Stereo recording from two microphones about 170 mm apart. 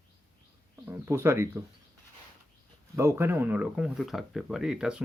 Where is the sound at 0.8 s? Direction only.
15° right (ahead or behind).